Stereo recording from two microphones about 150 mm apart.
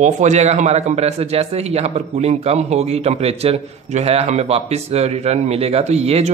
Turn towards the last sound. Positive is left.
turn(degrees=-45)  # may be behind; listen again after turning